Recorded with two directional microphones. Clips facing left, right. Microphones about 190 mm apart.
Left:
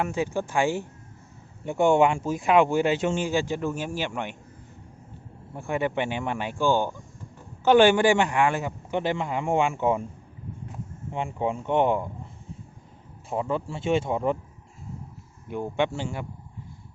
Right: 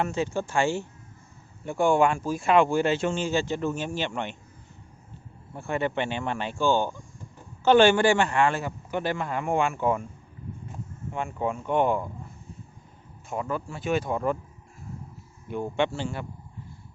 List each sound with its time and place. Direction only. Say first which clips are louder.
0.0 s speech: even; 15° left (ahead or behind)
5.5 s speech: left 1 dB; 15° left (ahead or behind)
11.1 s speech: left 1 dB; 25° left (ahead or behind)
13.3 s speech: left 3 dB; 25° left (ahead or behind)
15.7 s speech: left 1 dB; 15° left (ahead or behind)